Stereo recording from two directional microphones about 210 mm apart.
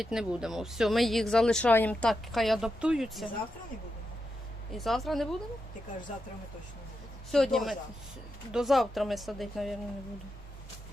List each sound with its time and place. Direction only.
0.0 s speech: centre (ahead or behind)
4.7 s speech: centre (ahead or behind)
7.3 s speech: centre (ahead or behind)